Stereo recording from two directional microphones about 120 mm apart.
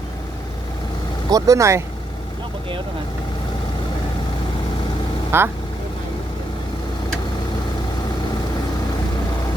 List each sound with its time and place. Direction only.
1.3 s speech: 30° right (ahead or behind)
5.3 s speech: 20° right (ahead or behind)